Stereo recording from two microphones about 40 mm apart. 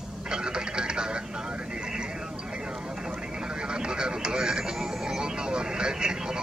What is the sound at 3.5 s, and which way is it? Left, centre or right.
Vehicle, right.